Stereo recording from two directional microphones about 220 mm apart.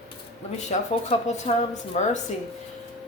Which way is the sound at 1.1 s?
30° left (ahead or behind).